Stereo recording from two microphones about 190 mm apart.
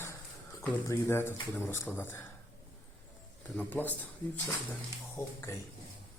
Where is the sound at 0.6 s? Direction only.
10° left (ahead or behind).